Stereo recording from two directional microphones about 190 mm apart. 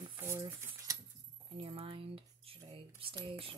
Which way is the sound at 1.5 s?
30° right (ahead or behind).